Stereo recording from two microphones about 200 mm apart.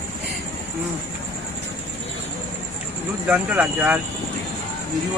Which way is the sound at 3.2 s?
10° right (ahead or behind).